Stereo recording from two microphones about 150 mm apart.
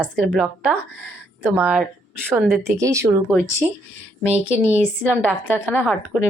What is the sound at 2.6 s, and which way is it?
Speech, 20° right (ahead or behind).